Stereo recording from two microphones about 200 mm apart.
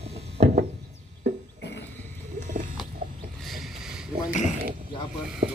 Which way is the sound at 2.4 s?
40° right (ahead or behind).